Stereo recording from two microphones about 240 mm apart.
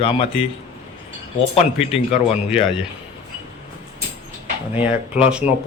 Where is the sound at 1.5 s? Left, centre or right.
Left.